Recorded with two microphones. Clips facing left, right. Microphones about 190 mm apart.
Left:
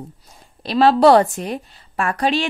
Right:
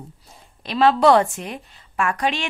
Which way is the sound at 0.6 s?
35° left (ahead or behind).